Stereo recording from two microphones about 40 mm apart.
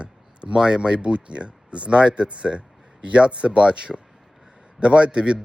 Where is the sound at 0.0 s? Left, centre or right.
Right.